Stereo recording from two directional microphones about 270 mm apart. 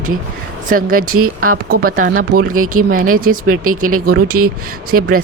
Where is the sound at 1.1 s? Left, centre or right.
Right.